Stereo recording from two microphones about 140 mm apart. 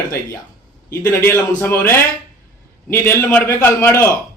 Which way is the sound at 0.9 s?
20° left (ahead or behind).